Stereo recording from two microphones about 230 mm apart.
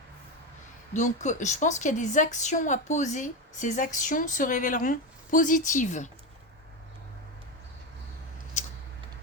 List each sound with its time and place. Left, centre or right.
0.9 s a woman's voice: left